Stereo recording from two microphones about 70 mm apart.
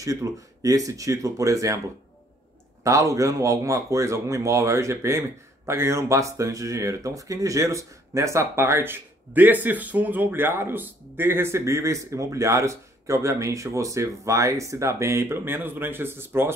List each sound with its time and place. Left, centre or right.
0.0 s speech: right
2.8 s speech: right